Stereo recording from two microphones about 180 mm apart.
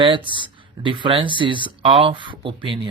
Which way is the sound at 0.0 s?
25° right (ahead or behind).